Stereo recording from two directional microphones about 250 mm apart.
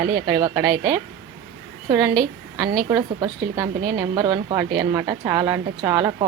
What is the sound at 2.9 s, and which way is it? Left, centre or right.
A woman's voice, centre.